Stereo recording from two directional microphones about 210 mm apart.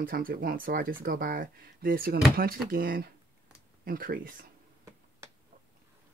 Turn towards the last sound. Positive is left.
turn(degrees=-40)  # may be behind; listen again after turning